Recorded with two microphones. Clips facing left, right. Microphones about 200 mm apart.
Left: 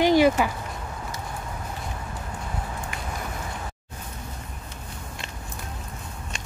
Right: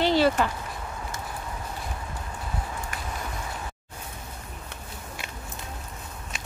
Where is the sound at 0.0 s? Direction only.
15° left (ahead or behind).